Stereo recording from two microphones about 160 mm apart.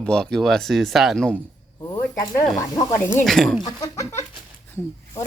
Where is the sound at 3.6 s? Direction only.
25° left (ahead or behind).